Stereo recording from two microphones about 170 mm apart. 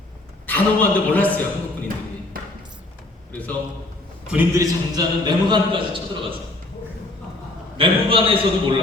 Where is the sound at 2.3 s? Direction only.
55° right (ahead or behind).